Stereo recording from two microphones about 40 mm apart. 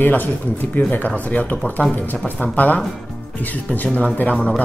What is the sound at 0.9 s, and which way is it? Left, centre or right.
Speech, left.